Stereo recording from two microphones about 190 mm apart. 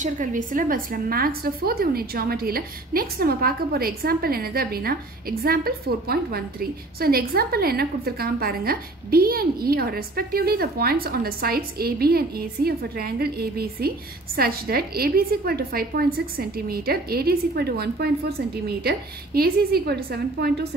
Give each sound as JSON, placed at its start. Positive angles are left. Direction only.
{"t": 0.0, "sound": "a woman's voice", "side_deg": -40}